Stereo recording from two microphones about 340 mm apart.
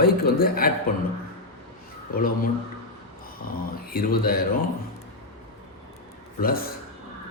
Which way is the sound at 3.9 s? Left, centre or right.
Left.